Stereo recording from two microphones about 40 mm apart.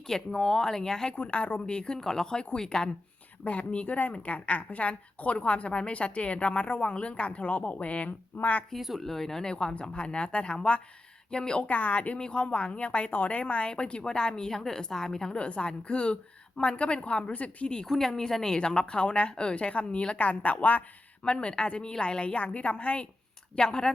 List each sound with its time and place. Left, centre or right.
0.1 s speech: centre
1.1 s a woman's voice: left
3.4 s a woman's voice: left
9.0 s a woman's voice: centre
11.6 s a woman's voice: left
12.1 s a woman's voice: left
15.4 s a woman's voice: left
17.8 s a woman's voice: centre; by 20.8 s left
21.2 s a woman's voice: left